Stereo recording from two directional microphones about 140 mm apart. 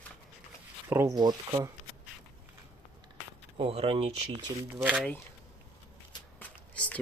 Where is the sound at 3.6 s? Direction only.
40° right (ahead or behind).